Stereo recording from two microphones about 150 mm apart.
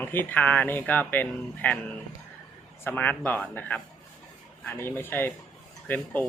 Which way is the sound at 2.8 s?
15° left (ahead or behind).